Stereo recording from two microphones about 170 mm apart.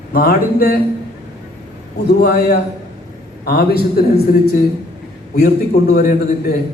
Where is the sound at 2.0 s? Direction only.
70° left (ahead or behind).